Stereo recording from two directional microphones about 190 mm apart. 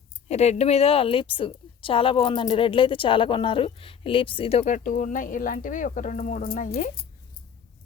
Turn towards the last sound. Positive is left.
turn(degrees=45)  # may be behind; listen again after turning